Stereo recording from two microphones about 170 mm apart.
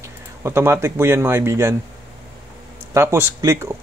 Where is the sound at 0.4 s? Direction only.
15° right (ahead or behind).